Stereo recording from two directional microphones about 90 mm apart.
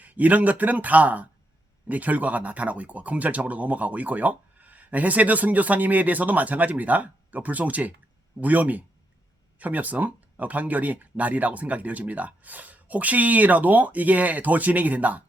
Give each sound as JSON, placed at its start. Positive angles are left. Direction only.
{"t": 0.0, "sound": "speech", "side_deg": -15}